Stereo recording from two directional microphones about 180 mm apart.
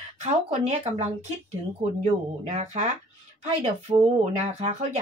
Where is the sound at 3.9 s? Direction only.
30° right (ahead or behind).